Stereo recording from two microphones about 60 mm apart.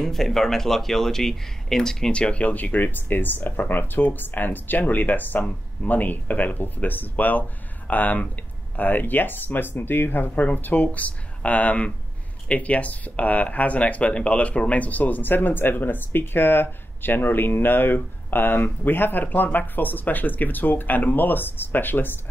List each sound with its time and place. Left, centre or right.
0.0 s speech: centre; by 22.1 s left